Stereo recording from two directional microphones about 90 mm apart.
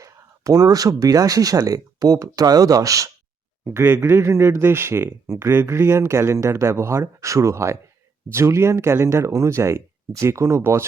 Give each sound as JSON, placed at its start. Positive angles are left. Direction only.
{"t": 0.0, "sound": "speech", "side_deg": -40}
{"t": 3.6, "sound": "speech", "side_deg": -25}